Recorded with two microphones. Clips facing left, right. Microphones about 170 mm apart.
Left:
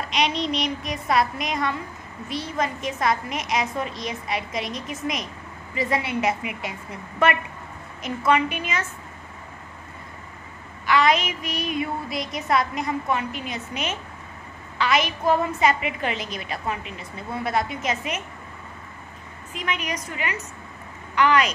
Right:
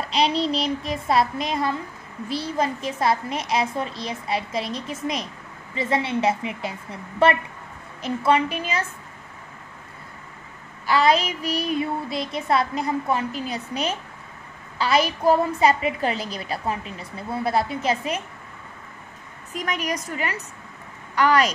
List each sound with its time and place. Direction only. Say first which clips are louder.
0.1 s a woman's voice: right 3 dB; 30° right (ahead or behind)
10.9 s a woman's voice: right 1 dB; 30° right (ahead or behind)
19.5 s a woman's voice: right 2 dB; 40° right (ahead or behind)